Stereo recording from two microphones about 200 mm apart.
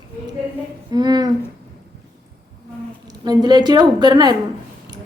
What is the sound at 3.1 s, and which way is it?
Speech, 20° right (ahead or behind).